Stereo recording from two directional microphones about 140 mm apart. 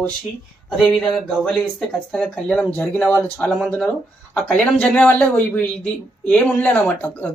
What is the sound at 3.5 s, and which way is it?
Speech, centre (ahead or behind).